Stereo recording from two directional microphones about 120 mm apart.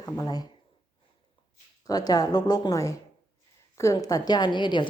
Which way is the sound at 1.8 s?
30° left (ahead or behind).